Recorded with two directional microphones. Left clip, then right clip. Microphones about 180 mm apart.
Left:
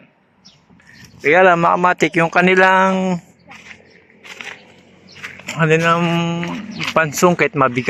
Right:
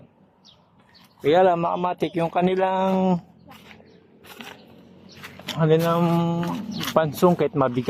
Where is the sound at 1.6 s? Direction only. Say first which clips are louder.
Left 10 dB; 50° left (ahead or behind).